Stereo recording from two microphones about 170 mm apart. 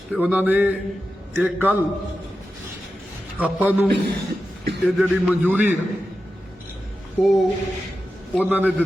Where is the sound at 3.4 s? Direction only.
10° right (ahead or behind).